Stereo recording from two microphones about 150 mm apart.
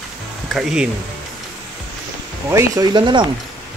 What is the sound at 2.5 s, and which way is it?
Speech, 25° right (ahead or behind).